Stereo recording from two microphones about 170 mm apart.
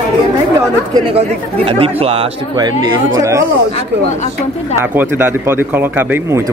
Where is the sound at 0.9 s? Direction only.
30° right (ahead or behind).